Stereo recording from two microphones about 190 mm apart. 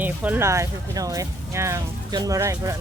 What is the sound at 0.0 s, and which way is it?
Speech, 10° right (ahead or behind).